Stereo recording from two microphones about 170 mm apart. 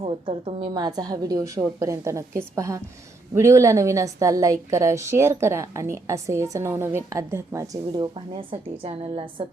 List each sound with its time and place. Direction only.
0.0 s a woman's voice: 35° right (ahead or behind)